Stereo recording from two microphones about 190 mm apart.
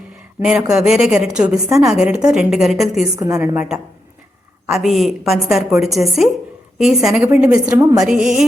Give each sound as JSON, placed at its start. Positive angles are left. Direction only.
{"t": 0.7, "sound": "a woman's voice", "side_deg": -5}
{"t": 3.2, "sound": "a woman's voice", "side_deg": -15}